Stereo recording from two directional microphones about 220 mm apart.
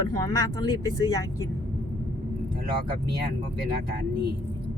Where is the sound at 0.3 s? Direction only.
15° left (ahead or behind).